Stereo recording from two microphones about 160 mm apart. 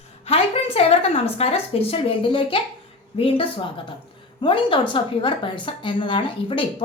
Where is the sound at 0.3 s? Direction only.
35° left (ahead or behind).